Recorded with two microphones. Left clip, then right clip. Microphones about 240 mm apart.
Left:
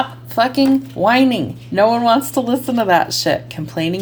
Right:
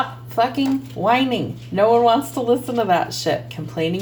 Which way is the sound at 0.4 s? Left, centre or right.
Left.